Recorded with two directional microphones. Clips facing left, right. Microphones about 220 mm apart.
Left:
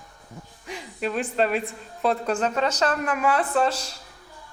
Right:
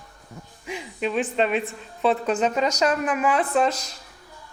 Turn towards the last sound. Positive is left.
turn(degrees=-10)  # may be behind; listen again after turning